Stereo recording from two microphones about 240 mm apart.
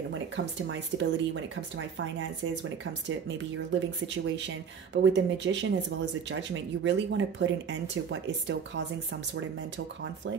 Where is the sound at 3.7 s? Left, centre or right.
Right.